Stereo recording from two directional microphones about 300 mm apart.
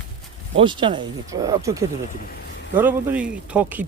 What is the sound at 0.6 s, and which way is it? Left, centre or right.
Speech, centre.